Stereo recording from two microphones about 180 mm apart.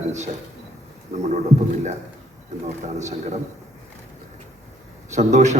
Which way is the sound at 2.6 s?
40° right (ahead or behind).